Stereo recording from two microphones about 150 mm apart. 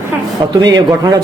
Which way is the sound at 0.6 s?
25° right (ahead or behind).